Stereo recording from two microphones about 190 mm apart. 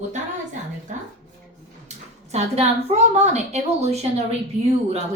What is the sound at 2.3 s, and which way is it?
A woman's voice, 35° right (ahead or behind).